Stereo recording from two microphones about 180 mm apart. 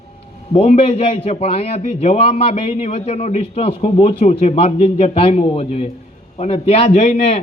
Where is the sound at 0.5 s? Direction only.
35° left (ahead or behind).